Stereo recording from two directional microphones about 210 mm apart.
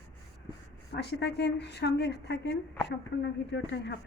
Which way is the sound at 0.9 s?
55° left (ahead or behind).